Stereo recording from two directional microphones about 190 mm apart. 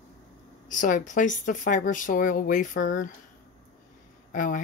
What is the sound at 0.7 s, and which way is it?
Speech, 45° left (ahead or behind).